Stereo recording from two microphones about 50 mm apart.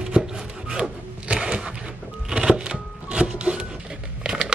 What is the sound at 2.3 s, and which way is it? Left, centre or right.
Music, right.